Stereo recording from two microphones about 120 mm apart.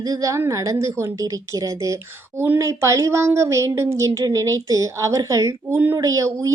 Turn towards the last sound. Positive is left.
turn(degrees=-25)  # may be behind; listen again after turning